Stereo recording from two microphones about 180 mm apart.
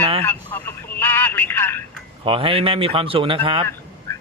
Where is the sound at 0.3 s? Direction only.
10° left (ahead or behind).